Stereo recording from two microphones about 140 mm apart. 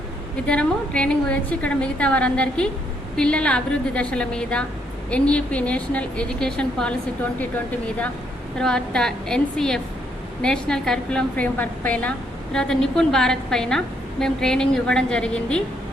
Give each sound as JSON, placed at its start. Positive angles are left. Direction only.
{"t": 0.4, "sound": "a woman's voice", "side_deg": 5}
{"t": 8.5, "sound": "a woman's voice", "side_deg": 5}